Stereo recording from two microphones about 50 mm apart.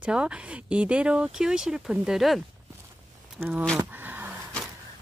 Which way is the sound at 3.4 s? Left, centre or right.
Right.